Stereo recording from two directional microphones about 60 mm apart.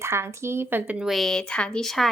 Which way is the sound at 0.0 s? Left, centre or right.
Right.